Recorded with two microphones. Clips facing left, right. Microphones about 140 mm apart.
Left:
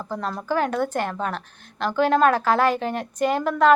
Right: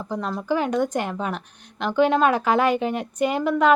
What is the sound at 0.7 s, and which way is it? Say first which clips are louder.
A woman's voice: right 1 dB; 10° right (ahead or behind).